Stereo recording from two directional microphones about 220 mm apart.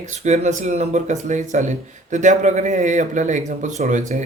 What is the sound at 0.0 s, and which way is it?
Speech, 30° right (ahead or behind).